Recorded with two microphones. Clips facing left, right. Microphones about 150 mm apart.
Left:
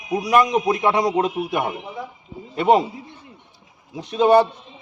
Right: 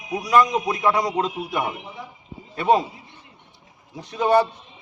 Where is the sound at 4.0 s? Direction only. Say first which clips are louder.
Left 4 dB; 20° left (ahead or behind).